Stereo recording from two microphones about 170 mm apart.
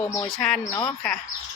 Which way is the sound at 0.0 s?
15° left (ahead or behind).